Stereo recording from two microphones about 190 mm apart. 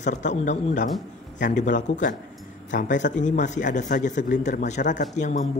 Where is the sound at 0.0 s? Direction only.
40° left (ahead or behind).